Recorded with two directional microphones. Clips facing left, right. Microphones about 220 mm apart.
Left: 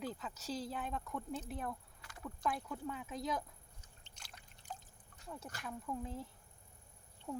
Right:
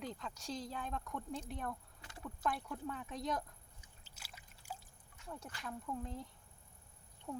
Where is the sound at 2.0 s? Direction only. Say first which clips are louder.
Right 2 dB; 25° right (ahead or behind).